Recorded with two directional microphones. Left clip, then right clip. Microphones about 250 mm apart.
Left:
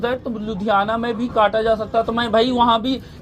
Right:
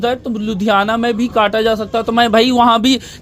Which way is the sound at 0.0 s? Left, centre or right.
Right.